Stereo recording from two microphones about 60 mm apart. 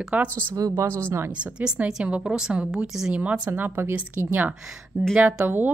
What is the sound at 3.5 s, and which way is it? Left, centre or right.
A woman's voice, right.